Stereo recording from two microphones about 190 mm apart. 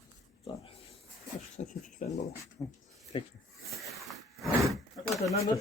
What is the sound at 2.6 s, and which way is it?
Speech, 10° left (ahead or behind).